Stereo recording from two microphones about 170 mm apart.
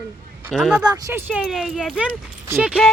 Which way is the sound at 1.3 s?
5° right (ahead or behind).